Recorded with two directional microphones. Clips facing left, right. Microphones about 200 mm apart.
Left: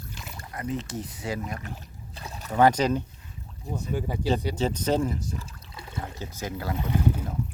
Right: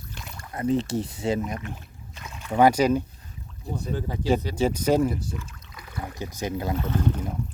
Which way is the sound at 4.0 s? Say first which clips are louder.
Left 4 dB; 10° left (ahead or behind).